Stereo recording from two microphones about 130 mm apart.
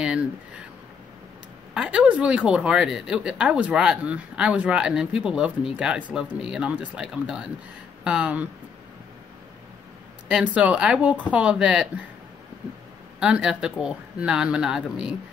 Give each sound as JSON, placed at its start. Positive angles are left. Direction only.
{"t": 1.7, "sound": "speech", "side_deg": -10}
{"t": 10.2, "sound": "speech", "side_deg": -10}
{"t": 13.2, "sound": "speech", "side_deg": -5}